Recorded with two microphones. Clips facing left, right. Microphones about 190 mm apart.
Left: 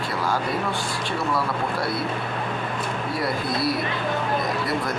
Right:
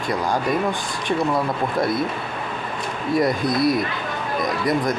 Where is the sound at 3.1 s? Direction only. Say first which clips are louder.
Right 8 dB; 20° right (ahead or behind).